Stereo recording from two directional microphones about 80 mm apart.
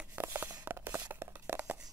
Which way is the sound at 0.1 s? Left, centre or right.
Right.